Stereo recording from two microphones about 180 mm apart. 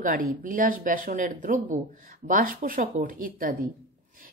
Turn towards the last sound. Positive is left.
turn(degrees=-50)  # may be behind; listen again after turning